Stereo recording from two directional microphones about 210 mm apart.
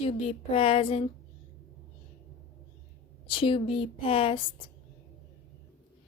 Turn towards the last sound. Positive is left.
turn(degrees=25)  # may be behind; listen again after turning